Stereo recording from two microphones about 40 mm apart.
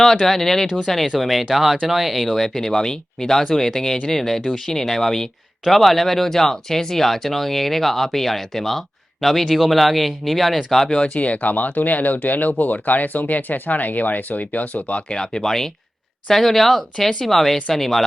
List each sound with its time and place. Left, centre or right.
0.0 s speech: centre
11.1 s speech: left
15.1 s speech: centre